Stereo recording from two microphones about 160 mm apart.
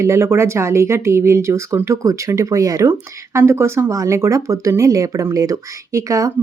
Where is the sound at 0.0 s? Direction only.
15° right (ahead or behind).